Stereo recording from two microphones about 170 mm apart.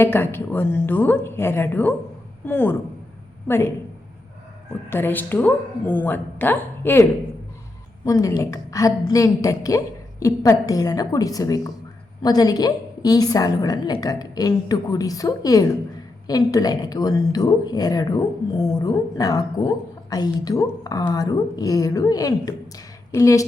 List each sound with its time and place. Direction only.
0.0 s a woman's voice: 15° left (ahead or behind)
4.9 s a woman's voice: 10° left (ahead or behind)